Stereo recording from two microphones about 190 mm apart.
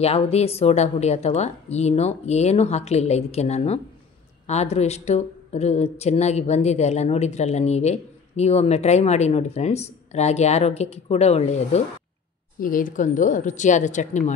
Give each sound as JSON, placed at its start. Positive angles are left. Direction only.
{"t": 0.0, "sound": "speech", "side_deg": 35}
{"t": 12.5, "sound": "speech", "side_deg": 45}